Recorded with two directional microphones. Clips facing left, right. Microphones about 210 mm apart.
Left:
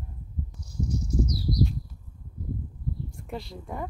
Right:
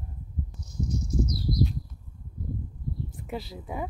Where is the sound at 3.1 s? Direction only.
Centre (ahead or behind).